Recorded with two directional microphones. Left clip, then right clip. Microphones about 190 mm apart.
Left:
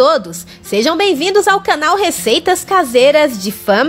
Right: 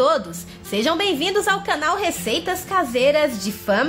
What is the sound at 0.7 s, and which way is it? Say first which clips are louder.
Speech: left 7 dB; 35° left (ahead or behind).